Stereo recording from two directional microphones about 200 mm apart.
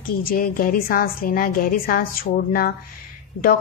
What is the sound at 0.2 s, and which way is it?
A woman's voice, 45° left (ahead or behind).